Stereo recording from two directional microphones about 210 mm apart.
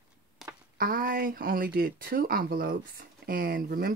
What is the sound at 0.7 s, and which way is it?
Speech, 45° right (ahead or behind).